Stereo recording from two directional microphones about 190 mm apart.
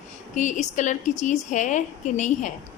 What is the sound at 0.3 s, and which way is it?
A woman's voice, 40° left (ahead or behind).